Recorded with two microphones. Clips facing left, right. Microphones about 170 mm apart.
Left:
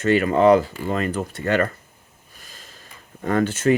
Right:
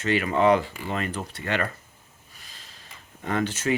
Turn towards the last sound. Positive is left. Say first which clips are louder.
# left 6 dB
turn(degrees=50)  # may be behind; listen again after turning